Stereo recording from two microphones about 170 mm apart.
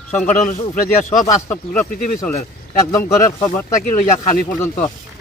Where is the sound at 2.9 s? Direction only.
15° left (ahead or behind).